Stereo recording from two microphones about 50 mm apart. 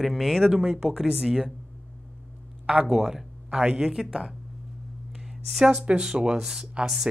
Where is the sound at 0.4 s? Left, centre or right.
Centre.